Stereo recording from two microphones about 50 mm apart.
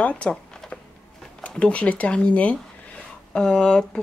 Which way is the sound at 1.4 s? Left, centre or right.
Left.